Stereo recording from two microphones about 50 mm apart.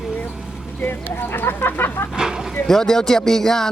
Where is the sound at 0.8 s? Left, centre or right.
Left.